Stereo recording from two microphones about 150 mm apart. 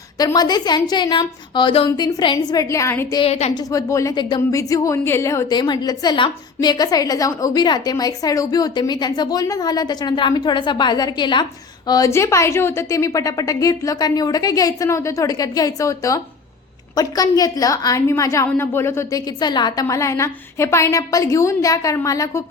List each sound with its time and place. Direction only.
0.2 s a woman's voice: 25° left (ahead or behind)
3.2 s a woman's voice: 45° left (ahead or behind)
3.5 s a woman's voice: 25° left (ahead or behind)